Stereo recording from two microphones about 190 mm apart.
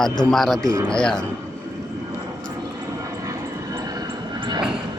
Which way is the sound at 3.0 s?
15° right (ahead or behind).